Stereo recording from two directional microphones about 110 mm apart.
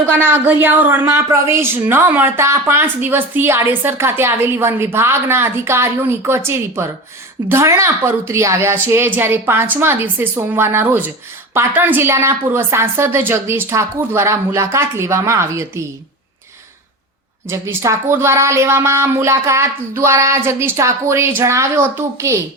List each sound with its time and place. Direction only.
0.3 s a woman's voice: 15° right (ahead or behind)
17.5 s a woman's voice: 25° right (ahead or behind)